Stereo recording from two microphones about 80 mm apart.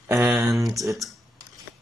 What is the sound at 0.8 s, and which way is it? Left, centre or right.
Speech, centre.